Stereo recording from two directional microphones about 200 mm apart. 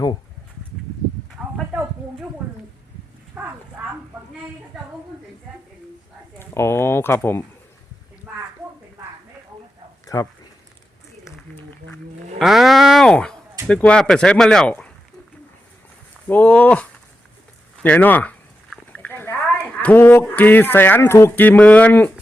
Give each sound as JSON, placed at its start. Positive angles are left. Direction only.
{"t": 1.4, "sound": "a sound", "side_deg": -5}
{"t": 3.4, "sound": "speech", "side_deg": -10}
{"t": 6.4, "sound": "speech", "side_deg": 10}
{"t": 10.1, "sound": "speech", "side_deg": 20}
{"t": 12.4, "sound": "speech", "side_deg": 0}
{"t": 16.2, "sound": "speech", "side_deg": 10}
{"t": 17.8, "sound": "speech", "side_deg": 10}
{"t": 18.9, "sound": "a sound", "side_deg": 10}
{"t": 19.8, "sound": "speech", "side_deg": 10}